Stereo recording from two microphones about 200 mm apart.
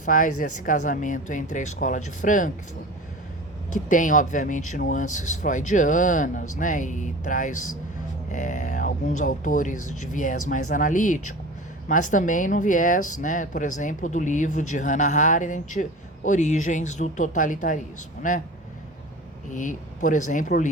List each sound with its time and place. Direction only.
0.0 s speech: 40° left (ahead or behind)
3.8 s speech: 40° left (ahead or behind)
19.5 s speech: 40° left (ahead or behind)